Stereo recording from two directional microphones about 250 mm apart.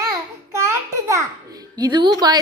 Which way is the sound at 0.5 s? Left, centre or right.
Centre.